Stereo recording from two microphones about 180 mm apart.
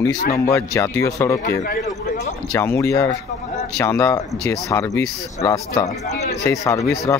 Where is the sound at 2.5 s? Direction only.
10° left (ahead or behind).